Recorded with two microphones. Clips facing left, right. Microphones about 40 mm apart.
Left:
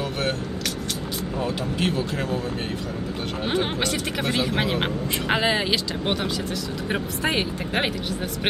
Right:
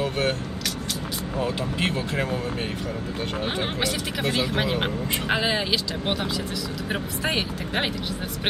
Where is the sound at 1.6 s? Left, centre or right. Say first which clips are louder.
Left 1 dB; right.